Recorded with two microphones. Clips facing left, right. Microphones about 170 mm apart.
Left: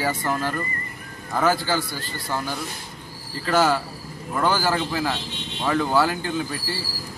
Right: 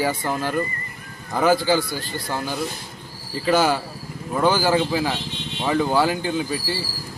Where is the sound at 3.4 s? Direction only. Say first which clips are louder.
Right 1 dB; 10° right (ahead or behind).